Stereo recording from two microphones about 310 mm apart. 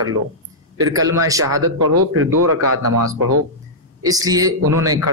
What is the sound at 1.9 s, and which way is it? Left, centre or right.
Speech, right.